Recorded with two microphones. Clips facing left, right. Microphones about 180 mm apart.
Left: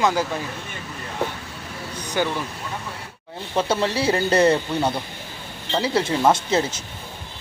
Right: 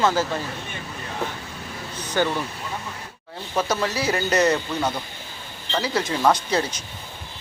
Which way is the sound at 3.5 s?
30° left (ahead or behind).